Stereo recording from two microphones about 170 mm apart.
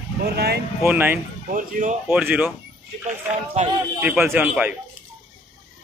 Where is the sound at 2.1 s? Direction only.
10° right (ahead or behind).